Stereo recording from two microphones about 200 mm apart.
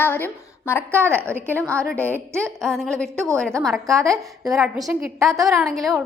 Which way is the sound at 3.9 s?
15° right (ahead or behind).